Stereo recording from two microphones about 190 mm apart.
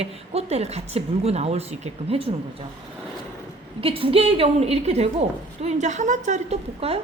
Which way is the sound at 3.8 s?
30° right (ahead or behind).